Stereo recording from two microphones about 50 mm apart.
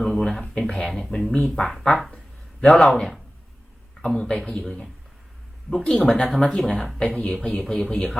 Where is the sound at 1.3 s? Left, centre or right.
Left.